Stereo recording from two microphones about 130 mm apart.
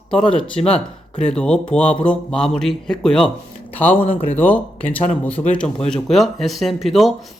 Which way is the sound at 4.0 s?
45° left (ahead or behind).